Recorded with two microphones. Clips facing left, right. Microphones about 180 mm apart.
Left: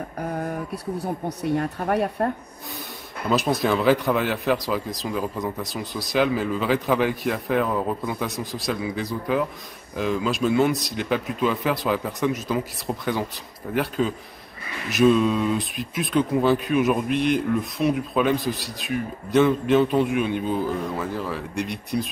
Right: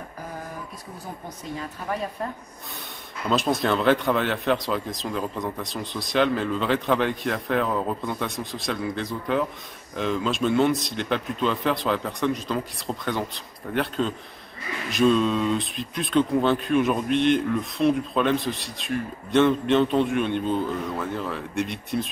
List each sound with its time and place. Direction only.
0.2 s speech: 60° left (ahead or behind)
3.3 s speech: 5° left (ahead or behind)